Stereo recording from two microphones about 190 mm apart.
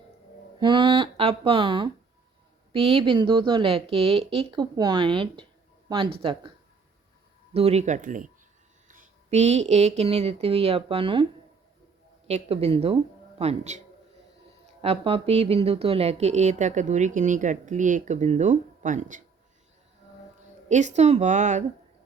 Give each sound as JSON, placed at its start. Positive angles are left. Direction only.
{"t": 0.6, "sound": "speech", "side_deg": -25}
{"t": 7.5, "sound": "speech", "side_deg": -35}
{"t": 12.3, "sound": "speech", "side_deg": -30}
{"t": 20.7, "sound": "speech", "side_deg": -40}